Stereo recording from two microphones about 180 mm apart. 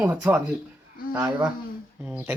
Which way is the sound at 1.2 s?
20° right (ahead or behind).